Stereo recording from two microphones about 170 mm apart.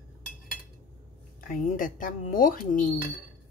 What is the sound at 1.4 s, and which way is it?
Speech, 55° left (ahead or behind).